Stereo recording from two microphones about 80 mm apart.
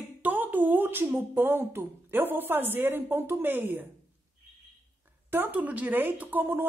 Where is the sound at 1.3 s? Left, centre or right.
Right.